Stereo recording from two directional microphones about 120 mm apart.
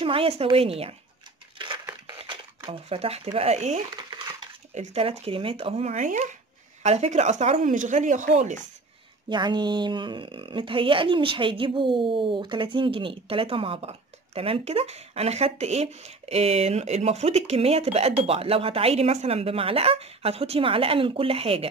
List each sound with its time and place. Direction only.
0.0 s a woman's voice: 50° right (ahead or behind)
2.1 s a sound: 45° right (ahead or behind)
3.3 s speech: 65° right (ahead or behind); by 6.3 s 85° right
6.8 s speech: 70° right (ahead or behind); by 8.5 s 90° right
9.3 s a woman's voice: 40° right (ahead or behind)